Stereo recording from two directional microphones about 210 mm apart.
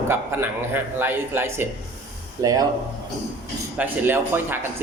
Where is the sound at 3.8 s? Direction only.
10° right (ahead or behind).